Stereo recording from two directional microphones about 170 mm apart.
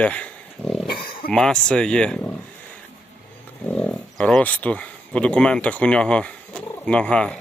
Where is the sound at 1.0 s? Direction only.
60° left (ahead or behind).